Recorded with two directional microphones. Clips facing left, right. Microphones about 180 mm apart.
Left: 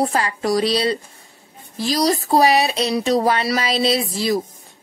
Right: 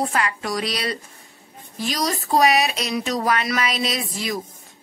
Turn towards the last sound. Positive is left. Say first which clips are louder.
# left 7 dB
turn(degrees=30)  # may be behind; listen again after turning